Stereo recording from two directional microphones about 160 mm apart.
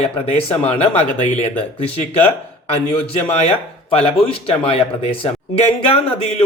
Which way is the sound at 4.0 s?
35° left (ahead or behind).